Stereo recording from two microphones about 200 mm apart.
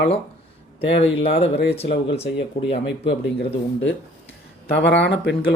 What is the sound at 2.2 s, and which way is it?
Speech, 60° left (ahead or behind).